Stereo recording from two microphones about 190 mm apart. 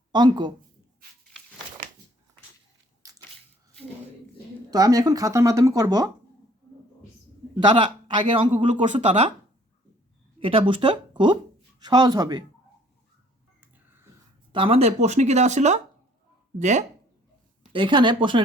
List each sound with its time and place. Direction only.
0.1 s speech: 25° right (ahead or behind)
3.0 s a sound: 15° right (ahead or behind)
4.7 s speech: 20° right (ahead or behind)
7.6 s speech: 25° right (ahead or behind)
8.7 s speech: 40° right (ahead or behind)
10.4 s speech: 30° right (ahead or behind)
13.6 s a sound: 10° right (ahead or behind)
14.5 s speech: 30° right (ahead or behind)
17.7 s speech: 25° right (ahead or behind)